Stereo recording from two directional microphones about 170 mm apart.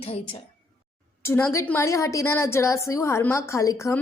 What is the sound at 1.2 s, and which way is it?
A woman's voice, 15° left (ahead or behind).